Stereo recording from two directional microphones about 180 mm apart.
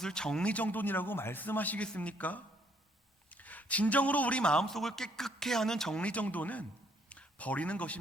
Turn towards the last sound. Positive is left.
turn(degrees=5)  # may be behind; listen again after turning